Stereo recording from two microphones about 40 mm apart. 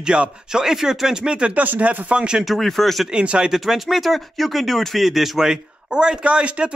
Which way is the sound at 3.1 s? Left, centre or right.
Right.